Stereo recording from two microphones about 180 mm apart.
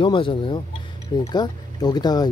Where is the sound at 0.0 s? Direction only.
30° left (ahead or behind).